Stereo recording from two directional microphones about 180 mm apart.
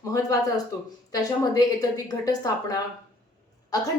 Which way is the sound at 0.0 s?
20° left (ahead or behind).